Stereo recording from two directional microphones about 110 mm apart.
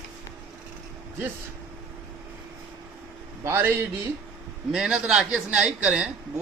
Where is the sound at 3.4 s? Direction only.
20° right (ahead or behind).